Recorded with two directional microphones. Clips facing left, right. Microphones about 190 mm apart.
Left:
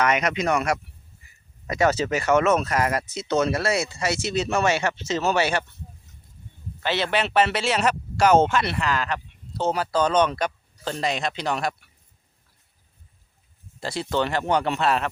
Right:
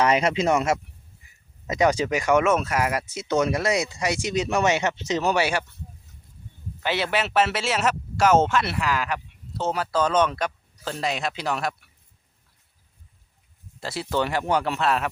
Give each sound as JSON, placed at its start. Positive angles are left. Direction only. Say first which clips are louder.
{"t": 0.0, "sound": "speech", "louder": "right 2 dB", "side_deg": -30}
{"t": 6.8, "sound": "speech", "louder": "left 1 dB", "side_deg": -10}
{"t": 13.7, "sound": "speech", "louder": "left 1 dB", "side_deg": -5}